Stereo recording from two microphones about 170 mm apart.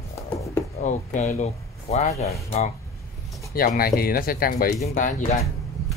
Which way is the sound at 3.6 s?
60° left (ahead or behind).